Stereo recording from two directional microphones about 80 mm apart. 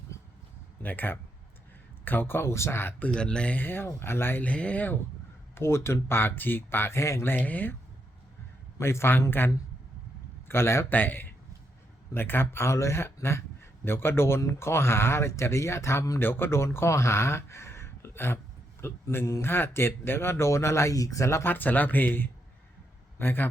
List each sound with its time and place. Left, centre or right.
0.8 s speech: left
3.2 s speech: centre; by 4.4 s left
4.4 s speech: centre
5.5 s speech: left
8.8 s speech: left
10.5 s speech: left
10.9 s a man's voice: left